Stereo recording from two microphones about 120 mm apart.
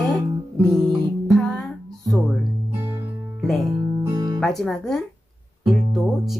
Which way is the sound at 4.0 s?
30° right (ahead or behind).